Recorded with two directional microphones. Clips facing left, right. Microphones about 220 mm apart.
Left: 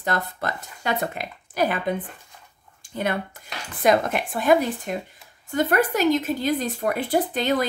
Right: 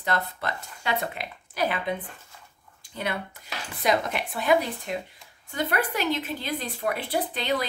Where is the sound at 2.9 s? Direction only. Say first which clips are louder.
Left 5 dB; 45° left (ahead or behind).